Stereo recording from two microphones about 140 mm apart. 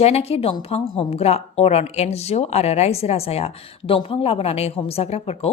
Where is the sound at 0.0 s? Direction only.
45° left (ahead or behind).